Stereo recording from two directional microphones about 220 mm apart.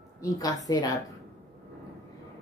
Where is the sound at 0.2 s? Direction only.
15° left (ahead or behind).